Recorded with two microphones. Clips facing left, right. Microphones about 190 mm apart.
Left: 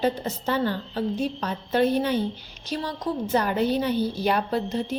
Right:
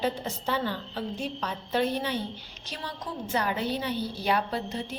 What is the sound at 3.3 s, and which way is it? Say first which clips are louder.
A woman's voice: left 5 dB; 45° left (ahead or behind).